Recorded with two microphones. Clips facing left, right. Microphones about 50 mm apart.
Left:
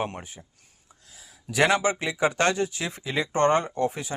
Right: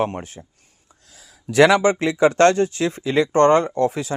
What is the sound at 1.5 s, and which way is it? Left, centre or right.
Speech, right.